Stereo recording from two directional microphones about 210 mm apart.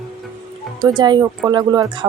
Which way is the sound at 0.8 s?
20° right (ahead or behind).